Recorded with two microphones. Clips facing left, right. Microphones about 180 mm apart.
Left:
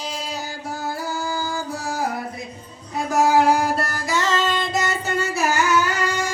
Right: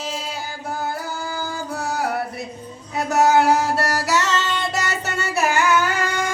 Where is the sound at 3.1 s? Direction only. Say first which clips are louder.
Right 1 dB; 70° right (ahead or behind).